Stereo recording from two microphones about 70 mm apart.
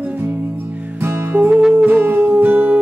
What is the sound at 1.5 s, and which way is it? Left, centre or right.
Music, centre.